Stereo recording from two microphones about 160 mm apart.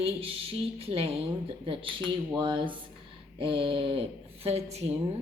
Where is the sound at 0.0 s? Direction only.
35° right (ahead or behind).